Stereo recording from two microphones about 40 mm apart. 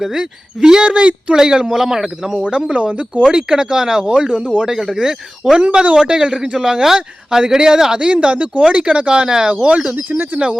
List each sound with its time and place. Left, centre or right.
0.0 s speech: centre
2.7 s speech: right
3.3 s speech: centre
4.7 s speech: centre
6.0 s speech: right
9.9 s speech: right